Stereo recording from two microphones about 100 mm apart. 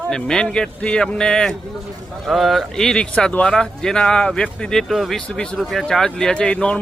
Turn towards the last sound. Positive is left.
turn(degrees=10)  # may be behind; listen again after turning